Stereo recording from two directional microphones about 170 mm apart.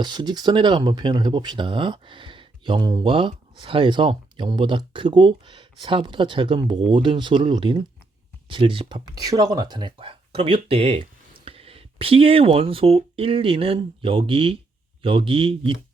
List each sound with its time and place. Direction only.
0.0 s speech: 25° right (ahead or behind)